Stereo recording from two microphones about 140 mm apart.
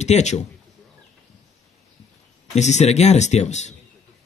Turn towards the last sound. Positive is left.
turn(degrees=55)  # may be behind; listen again after turning